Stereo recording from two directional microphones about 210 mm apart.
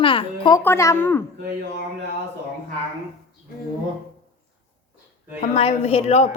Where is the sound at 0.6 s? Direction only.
10° left (ahead or behind).